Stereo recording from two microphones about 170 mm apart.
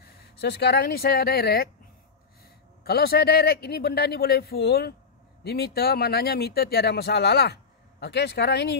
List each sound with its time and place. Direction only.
0.0 s speech: 75° left (ahead or behind)
2.8 s speech: 65° left (ahead or behind)